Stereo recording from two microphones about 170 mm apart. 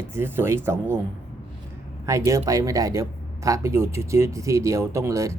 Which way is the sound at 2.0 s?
20° right (ahead or behind).